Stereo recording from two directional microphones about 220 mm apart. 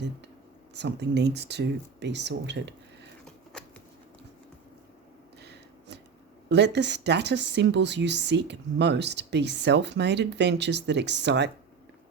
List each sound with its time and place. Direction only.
0.8 s a woman's voice: 50° right (ahead or behind)
5.4 s a sound: 50° right (ahead or behind)
6.5 s a woman's voice: 50° right (ahead or behind)